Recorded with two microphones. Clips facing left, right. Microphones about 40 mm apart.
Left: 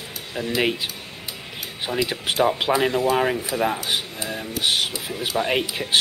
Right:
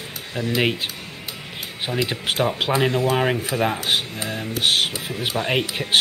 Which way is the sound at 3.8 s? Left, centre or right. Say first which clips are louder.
Right 3 dB; right.